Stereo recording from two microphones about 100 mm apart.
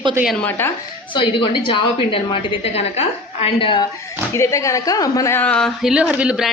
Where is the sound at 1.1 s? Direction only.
55° left (ahead or behind).